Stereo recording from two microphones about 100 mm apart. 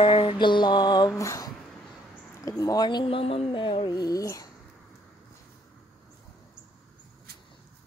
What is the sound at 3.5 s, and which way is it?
Music, 55° left (ahead or behind).